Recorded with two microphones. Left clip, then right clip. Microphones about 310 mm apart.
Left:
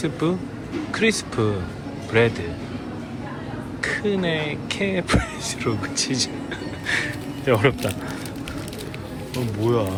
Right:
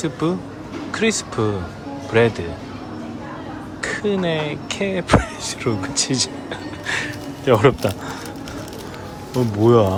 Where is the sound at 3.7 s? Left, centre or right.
Centre.